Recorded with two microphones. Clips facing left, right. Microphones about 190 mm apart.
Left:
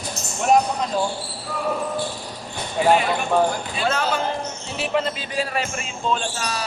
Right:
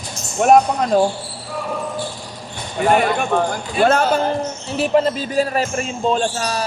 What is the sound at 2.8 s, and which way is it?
Speech, 55° right (ahead or behind).